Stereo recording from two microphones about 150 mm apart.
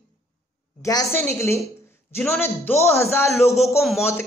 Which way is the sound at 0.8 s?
20° left (ahead or behind).